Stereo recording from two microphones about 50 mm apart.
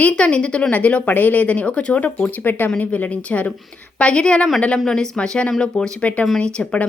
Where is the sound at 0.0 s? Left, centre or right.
Left.